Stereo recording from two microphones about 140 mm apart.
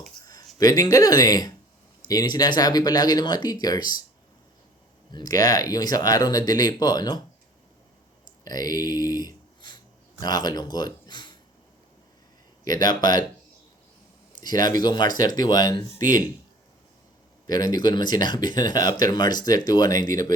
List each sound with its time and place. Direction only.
0.6 s speech: 25° left (ahead or behind)
5.1 s speech: 25° left (ahead or behind)
8.4 s speech: 25° left (ahead or behind)
12.6 s speech: 30° left (ahead or behind)
14.3 s speech: 30° left (ahead or behind)
17.4 s speech: 30° left (ahead or behind)